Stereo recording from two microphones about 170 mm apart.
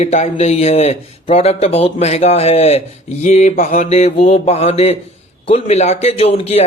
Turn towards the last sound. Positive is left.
turn(degrees=35)  # may be behind; listen again after turning